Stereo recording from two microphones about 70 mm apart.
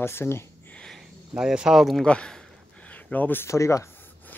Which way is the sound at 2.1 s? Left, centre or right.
Centre.